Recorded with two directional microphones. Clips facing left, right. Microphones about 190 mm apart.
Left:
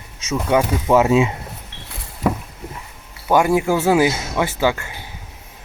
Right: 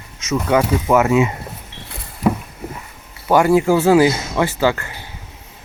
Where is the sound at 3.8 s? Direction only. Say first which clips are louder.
Right 3 dB; 10° left (ahead or behind).